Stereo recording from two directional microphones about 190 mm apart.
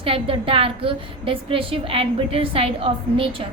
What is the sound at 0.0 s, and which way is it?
A woman's voice, 30° right (ahead or behind).